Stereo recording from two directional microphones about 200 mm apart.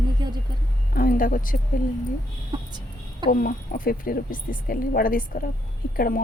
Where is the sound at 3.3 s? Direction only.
45° left (ahead or behind).